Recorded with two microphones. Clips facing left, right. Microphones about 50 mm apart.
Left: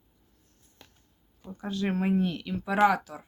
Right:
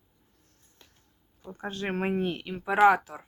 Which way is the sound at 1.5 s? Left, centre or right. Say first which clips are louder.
Left 2 dB; right.